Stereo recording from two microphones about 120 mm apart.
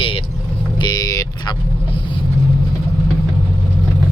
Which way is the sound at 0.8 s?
35° left (ahead or behind).